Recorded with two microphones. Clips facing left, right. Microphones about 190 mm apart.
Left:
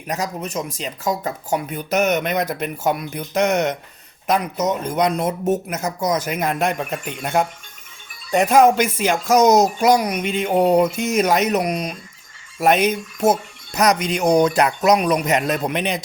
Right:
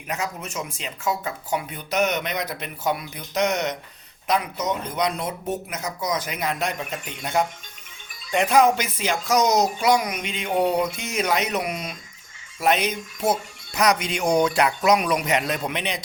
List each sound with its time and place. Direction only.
0.1 s speech: 35° left (ahead or behind); by 7.4 s 60° left (ahead or behind)
8.3 s speech: 40° left (ahead or behind)
12.5 s speech: 50° left (ahead or behind)